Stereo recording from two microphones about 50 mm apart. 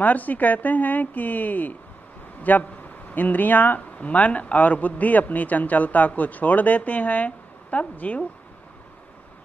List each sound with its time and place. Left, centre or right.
0.0 s speech: left